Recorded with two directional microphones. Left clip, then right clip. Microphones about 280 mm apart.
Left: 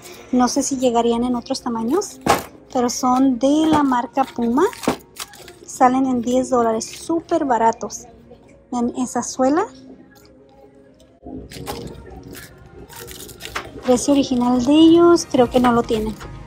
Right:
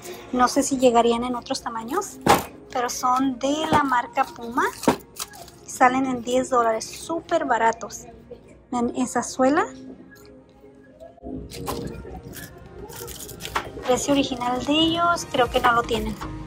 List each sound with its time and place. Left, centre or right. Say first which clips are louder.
0.7 s a woman's voice: even; centre
4.7 s a sound: even; centre
5.7 s a woman's voice: left 3 dB; centre
11.5 s music: even; centre
13.8 s a woman's voice: left 5 dB; centre